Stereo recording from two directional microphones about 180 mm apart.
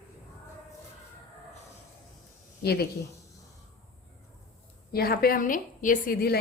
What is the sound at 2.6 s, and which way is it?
Speech, 60° left (ahead or behind).